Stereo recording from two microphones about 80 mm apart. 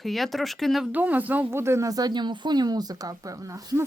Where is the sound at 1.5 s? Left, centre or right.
Right.